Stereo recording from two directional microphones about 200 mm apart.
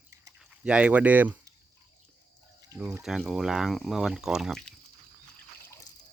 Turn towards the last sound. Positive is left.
turn(degrees=15)  # may be behind; listen again after turning